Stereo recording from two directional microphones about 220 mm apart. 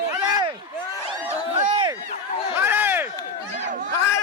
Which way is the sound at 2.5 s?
10° right (ahead or behind).